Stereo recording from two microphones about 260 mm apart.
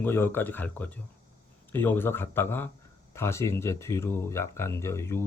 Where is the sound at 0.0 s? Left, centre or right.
Centre.